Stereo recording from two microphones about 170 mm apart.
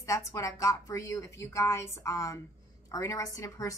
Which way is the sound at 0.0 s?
20° left (ahead or behind).